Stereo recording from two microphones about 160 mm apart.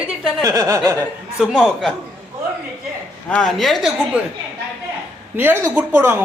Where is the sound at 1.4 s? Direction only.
Centre (ahead or behind).